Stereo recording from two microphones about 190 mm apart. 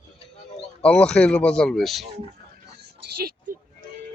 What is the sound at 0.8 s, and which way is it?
Speech, 5° left (ahead or behind).